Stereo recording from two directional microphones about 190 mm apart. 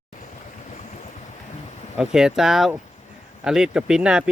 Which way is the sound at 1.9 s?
5° right (ahead or behind).